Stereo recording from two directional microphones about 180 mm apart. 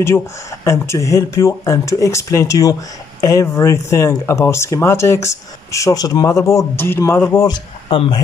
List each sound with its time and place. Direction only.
0.7 s speech: 15° left (ahead or behind)
7.5 s speech: 25° left (ahead or behind)